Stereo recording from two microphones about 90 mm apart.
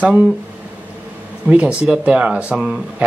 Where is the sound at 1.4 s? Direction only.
15° right (ahead or behind).